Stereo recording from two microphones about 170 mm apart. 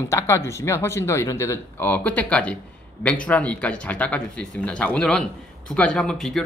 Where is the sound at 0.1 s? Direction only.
15° left (ahead or behind).